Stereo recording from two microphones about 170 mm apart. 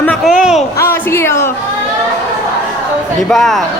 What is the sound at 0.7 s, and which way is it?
Speech, 15° left (ahead or behind).